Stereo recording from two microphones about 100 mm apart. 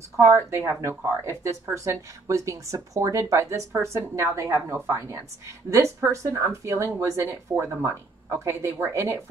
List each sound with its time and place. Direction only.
0.5 s speech: 25° right (ahead or behind)